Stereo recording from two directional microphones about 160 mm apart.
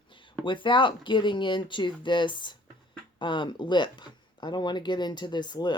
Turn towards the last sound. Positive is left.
turn(degrees=25)  # may be behind; listen again after turning